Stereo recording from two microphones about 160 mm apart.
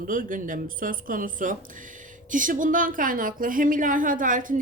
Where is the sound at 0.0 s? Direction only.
60° right (ahead or behind).